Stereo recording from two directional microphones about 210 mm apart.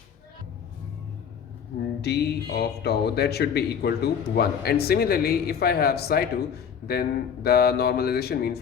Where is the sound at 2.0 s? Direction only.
50° left (ahead or behind).